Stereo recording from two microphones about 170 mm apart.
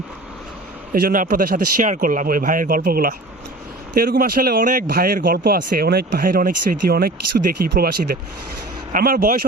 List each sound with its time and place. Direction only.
0.9 s speech: 55° right (ahead or behind)
8.9 s speech: 55° right (ahead or behind)